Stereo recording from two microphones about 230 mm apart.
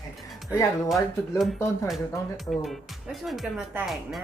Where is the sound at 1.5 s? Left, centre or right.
Centre.